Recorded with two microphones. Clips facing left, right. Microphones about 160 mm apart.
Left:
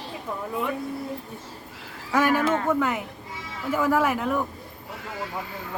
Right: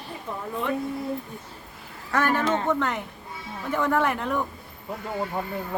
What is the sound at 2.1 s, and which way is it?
A woman's voice, 10° left (ahead or behind).